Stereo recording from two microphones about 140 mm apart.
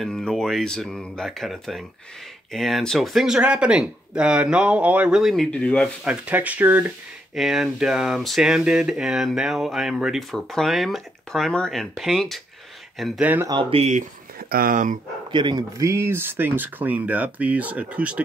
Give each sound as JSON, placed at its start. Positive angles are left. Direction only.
{"t": 0.0, "sound": "speech", "side_deg": 5}
{"t": 6.0, "sound": "speech", "side_deg": -10}
{"t": 7.3, "sound": "speech", "side_deg": -5}
{"t": 13.5, "sound": "speech", "side_deg": -40}
{"t": 14.5, "sound": "speech", "side_deg": -85}
{"t": 15.3, "sound": "speech", "side_deg": -30}